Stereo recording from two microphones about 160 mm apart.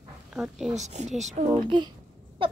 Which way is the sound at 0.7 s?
45° right (ahead or behind).